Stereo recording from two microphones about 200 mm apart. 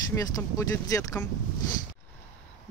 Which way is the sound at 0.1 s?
15° left (ahead or behind).